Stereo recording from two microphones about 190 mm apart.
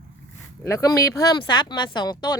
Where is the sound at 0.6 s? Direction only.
15° left (ahead or behind).